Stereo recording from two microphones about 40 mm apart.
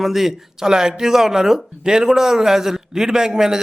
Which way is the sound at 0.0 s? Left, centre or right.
Centre.